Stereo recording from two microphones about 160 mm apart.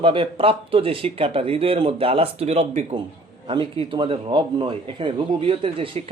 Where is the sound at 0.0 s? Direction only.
35° right (ahead or behind).